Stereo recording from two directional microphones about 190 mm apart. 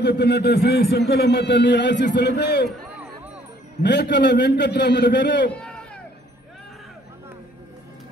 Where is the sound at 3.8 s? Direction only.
60° left (ahead or behind).